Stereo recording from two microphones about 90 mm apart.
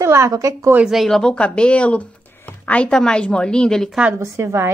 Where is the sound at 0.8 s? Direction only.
Centre (ahead or behind).